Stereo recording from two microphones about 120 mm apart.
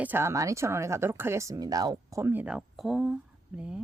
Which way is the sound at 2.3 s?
10° right (ahead or behind).